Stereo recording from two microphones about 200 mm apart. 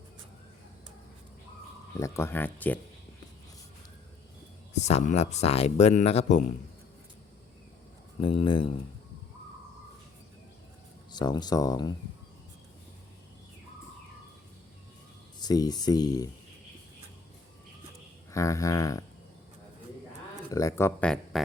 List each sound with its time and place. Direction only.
2.0 s speech: 15° left (ahead or behind)
4.7 s speech: 35° left (ahead or behind)
8.2 s speech: 25° left (ahead or behind)
11.1 s speech: 20° left (ahead or behind)
15.4 s speech: 20° left (ahead or behind)
18.3 s speech: 15° left (ahead or behind)
20.5 s speech: 15° left (ahead or behind)